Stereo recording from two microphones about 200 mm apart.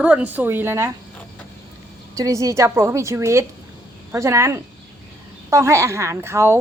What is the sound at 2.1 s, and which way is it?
A woman's voice, 15° right (ahead or behind).